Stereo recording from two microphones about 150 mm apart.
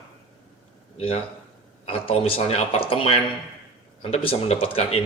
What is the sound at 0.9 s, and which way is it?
Speech, 45° left (ahead or behind).